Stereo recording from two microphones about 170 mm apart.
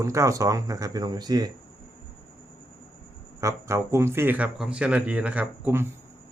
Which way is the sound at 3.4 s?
15° right (ahead or behind).